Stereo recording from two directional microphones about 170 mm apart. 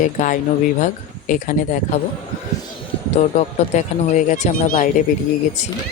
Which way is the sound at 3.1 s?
45° left (ahead or behind).